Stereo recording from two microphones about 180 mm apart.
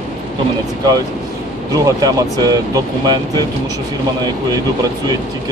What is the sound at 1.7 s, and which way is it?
Speech, 20° right (ahead or behind).